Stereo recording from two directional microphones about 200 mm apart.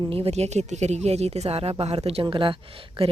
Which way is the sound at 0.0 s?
25° right (ahead or behind).